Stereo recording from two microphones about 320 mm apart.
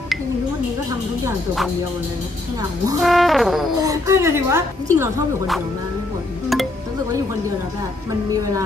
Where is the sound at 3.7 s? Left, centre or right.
Centre.